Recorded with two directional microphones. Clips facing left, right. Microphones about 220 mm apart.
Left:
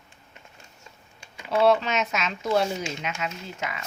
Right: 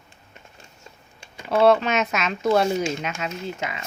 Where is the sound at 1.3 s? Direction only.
50° right (ahead or behind).